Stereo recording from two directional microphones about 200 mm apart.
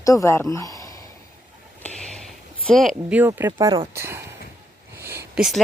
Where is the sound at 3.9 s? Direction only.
10° right (ahead or behind).